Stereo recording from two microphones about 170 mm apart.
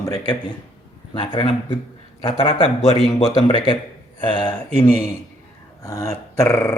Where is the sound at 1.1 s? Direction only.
30° left (ahead or behind).